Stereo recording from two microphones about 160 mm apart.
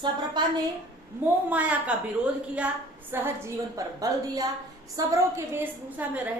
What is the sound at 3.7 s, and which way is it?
A woman's voice, 20° right (ahead or behind).